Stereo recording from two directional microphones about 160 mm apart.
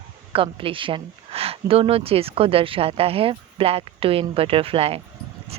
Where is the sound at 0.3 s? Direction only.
35° right (ahead or behind).